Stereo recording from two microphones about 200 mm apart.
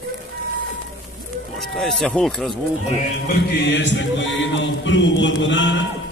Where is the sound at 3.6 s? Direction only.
60° left (ahead or behind).